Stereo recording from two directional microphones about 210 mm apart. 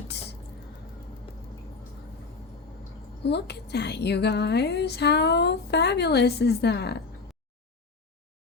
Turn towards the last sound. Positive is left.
turn(degrees=50)  # may be behind; listen again after turning